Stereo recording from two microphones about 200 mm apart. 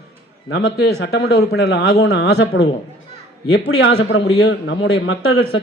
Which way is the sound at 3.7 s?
75° left (ahead or behind).